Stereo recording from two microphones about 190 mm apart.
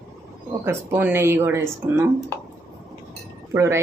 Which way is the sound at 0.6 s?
15° right (ahead or behind).